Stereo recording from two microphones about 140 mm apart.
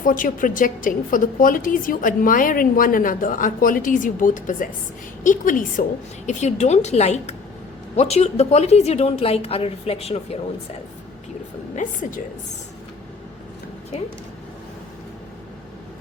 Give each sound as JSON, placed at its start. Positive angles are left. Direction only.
{"t": 0.0, "sound": "a woman's voice", "side_deg": 75}
{"t": 6.2, "sound": "a woman's voice", "side_deg": 55}
{"t": 11.7, "sound": "a woman's voice", "side_deg": 65}